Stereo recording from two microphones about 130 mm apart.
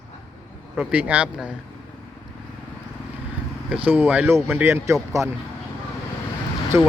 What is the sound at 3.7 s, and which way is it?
Speech, 15° right (ahead or behind).